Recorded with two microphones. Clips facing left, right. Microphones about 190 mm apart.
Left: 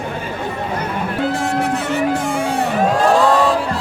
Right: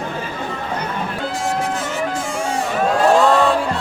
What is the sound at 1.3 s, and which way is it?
Music, 60° left (ahead or behind).